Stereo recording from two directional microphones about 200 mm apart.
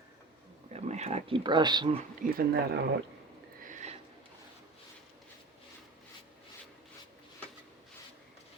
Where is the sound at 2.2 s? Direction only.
50° right (ahead or behind).